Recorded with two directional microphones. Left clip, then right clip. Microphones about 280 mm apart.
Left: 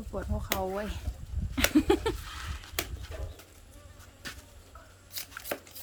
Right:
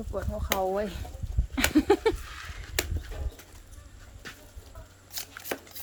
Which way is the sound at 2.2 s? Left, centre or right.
Left.